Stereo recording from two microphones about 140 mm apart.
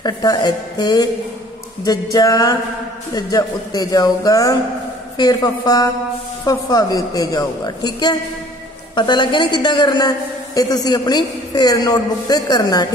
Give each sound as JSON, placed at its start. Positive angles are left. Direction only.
{"t": 0.0, "sound": "a man's voice", "side_deg": 30}
{"t": 2.1, "sound": "a man's voice", "side_deg": 25}